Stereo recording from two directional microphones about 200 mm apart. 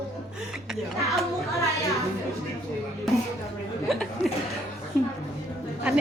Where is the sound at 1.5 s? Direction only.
15° left (ahead or behind).